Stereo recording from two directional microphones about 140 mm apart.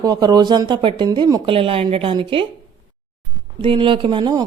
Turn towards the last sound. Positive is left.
turn(degrees=-35)  # may be behind; listen again after turning